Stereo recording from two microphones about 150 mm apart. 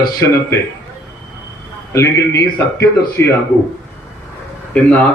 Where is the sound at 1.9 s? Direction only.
20° left (ahead or behind).